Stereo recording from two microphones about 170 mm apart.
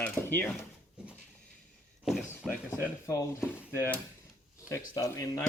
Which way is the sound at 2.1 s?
Centre (ahead or behind).